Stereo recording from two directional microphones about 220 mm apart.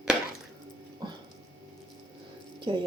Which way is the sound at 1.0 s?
20° right (ahead or behind).